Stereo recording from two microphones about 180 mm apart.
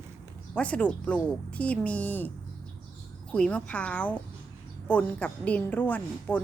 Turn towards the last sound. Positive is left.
turn(degrees=10)  # may be behind; listen again after turning